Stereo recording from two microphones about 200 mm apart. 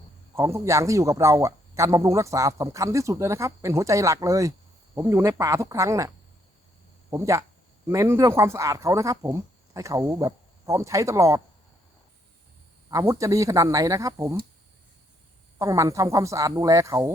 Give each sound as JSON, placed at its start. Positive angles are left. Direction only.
{"t": 0.3, "sound": "speech", "side_deg": -15}
{"t": 7.1, "sound": "speech", "side_deg": -15}
{"t": 12.9, "sound": "speech", "side_deg": -15}
{"t": 15.5, "sound": "speech", "side_deg": -15}